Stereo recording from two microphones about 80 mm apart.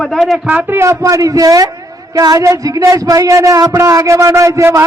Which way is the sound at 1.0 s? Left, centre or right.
Right.